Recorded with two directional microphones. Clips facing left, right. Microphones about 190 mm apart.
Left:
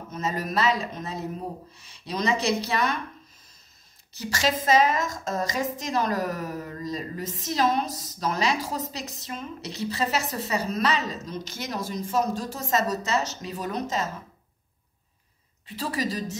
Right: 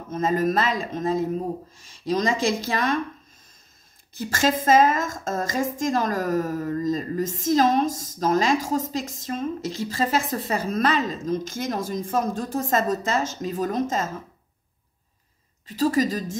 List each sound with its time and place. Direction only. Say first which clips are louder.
0.1 s a woman's voice: right 7 dB; 50° right (ahead or behind)
4.1 s a woman's voice: right 4 dB; 50° right (ahead or behind)
15.6 s a woman's voice: right 8 dB; 45° right (ahead or behind)